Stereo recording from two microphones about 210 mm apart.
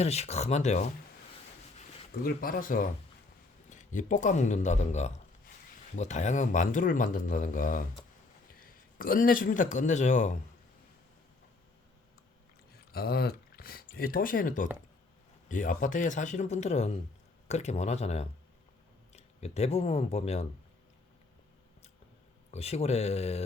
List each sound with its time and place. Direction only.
0.0 s speech: 30° left (ahead or behind)
2.2 s a man's voice: 45° left (ahead or behind)
12.9 s speech: 50° left (ahead or behind); by 20.5 s 30° left (ahead or behind)
22.5 s a man's voice: 30° left (ahead or behind)